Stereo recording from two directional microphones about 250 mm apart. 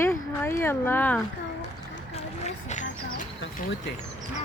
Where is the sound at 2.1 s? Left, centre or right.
Left.